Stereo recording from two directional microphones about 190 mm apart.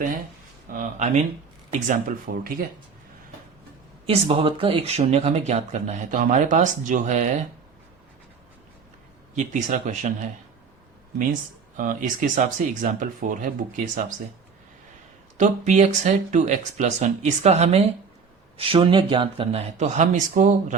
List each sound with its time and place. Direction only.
0.7 s speech: 40° right (ahead or behind)
4.0 s speech: 30° right (ahead or behind)
9.3 s speech: 40° right (ahead or behind)
11.8 s speech: 45° right (ahead or behind)
15.4 s speech: 40° right (ahead or behind)